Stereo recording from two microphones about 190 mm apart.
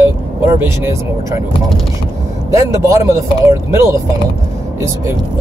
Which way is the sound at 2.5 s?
15° right (ahead or behind).